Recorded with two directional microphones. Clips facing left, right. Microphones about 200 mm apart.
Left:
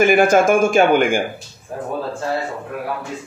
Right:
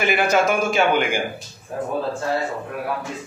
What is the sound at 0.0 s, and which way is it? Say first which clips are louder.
A man's voice: left 6 dB; 45° left (ahead or behind).